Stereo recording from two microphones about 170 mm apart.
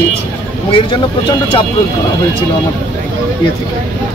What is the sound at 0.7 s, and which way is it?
Speech, 30° left (ahead or behind).